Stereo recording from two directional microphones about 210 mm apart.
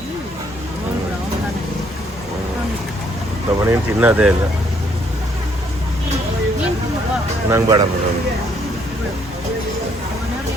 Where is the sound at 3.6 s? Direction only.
10° right (ahead or behind).